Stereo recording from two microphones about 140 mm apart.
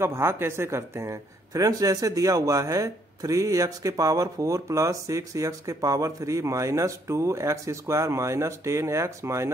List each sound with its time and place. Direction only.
0.0 s speech: 20° right (ahead or behind)